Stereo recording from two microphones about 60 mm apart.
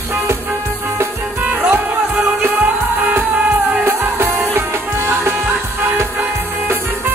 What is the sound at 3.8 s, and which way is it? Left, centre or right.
Music, right.